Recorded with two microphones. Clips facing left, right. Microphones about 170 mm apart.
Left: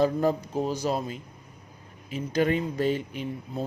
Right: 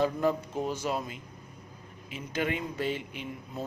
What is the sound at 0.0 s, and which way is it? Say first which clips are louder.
Speech: left 4 dB; 40° left (ahead or behind).